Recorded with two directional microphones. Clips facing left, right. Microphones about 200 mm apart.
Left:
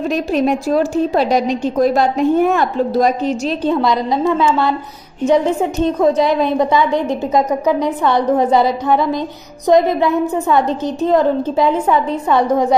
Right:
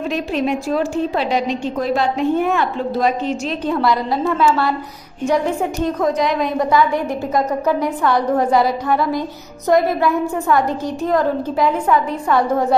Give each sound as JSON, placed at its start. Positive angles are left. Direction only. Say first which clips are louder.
{"t": 0.1, "sound": "a woman's voice", "louder": "left 4 dB", "side_deg": 40}
{"t": 3.7, "sound": "a woman's voice", "louder": "right 1 dB", "side_deg": 20}
{"t": 5.9, "sound": "a woman's voice", "louder": "left 5 dB", "side_deg": 25}